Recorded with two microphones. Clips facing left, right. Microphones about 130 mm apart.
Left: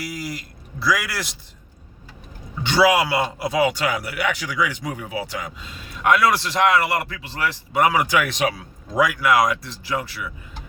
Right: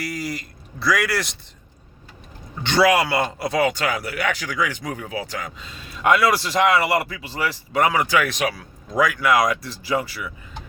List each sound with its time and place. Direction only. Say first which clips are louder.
0.0 s a man's voice: right 2 dB; centre (ahead or behind)
2.6 s a man's voice: even; 5° left (ahead or behind)
7.8 s speech: even; 10° left (ahead or behind)
9.0 s a man's voice: even; 5° left (ahead or behind)